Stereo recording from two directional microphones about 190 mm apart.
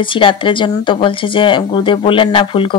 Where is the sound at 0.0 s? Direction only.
25° left (ahead or behind).